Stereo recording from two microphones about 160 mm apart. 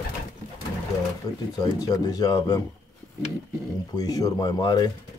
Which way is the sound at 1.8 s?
25° left (ahead or behind).